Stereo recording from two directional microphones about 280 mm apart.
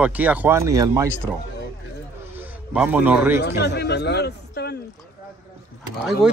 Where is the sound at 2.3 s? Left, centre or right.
Centre.